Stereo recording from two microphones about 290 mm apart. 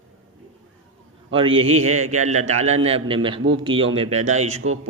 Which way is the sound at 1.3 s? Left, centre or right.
Centre.